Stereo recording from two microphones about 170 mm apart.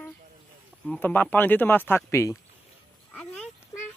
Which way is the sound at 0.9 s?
10° left (ahead or behind).